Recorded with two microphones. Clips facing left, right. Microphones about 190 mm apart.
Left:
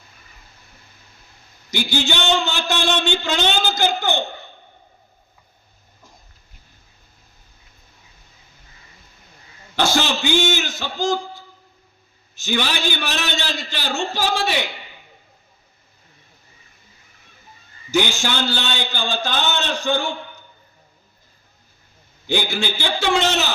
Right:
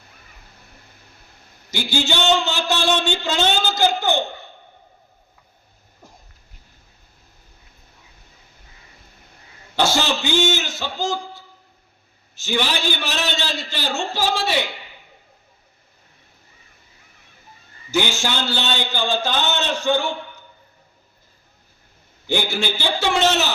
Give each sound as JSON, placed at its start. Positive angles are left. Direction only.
{"t": 1.7, "sound": "a man's voice", "side_deg": 15}
{"t": 9.8, "sound": "a sound", "side_deg": 15}
{"t": 12.4, "sound": "a man's voice", "side_deg": 15}
{"t": 17.9, "sound": "a man's voice", "side_deg": 15}
{"t": 22.3, "sound": "a man's voice", "side_deg": 15}